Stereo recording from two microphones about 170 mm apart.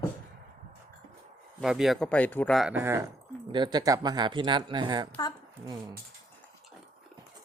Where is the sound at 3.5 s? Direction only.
25° right (ahead or behind).